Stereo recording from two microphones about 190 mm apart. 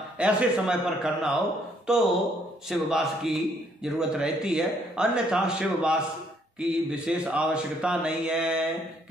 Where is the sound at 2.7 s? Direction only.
Centre (ahead or behind).